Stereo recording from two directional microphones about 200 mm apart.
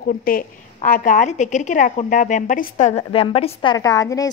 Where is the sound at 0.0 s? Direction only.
45° left (ahead or behind); by 3.7 s 25° left (ahead or behind).